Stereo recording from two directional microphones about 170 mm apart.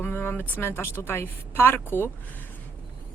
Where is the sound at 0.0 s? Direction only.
10° left (ahead or behind).